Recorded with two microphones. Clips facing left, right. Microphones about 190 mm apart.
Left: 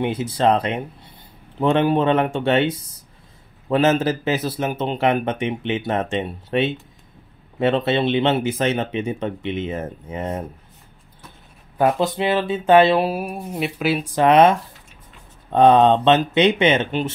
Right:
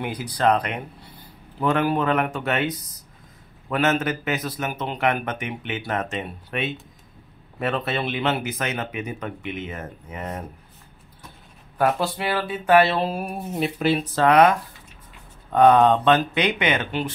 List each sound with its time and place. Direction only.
0.0 s a man's voice: 25° left (ahead or behind)
11.8 s a man's voice: 20° left (ahead or behind)
14.2 s a man's voice: 25° left (ahead or behind)